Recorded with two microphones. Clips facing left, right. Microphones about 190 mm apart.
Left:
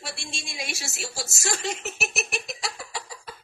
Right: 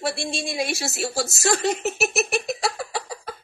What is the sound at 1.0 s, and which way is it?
Speech, 60° right (ahead or behind).